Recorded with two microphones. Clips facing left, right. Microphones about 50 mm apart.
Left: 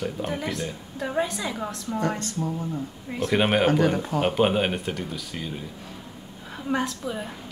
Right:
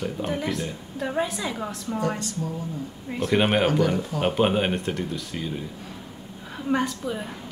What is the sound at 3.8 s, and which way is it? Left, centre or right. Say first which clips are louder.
Speech: left 1 dB; left.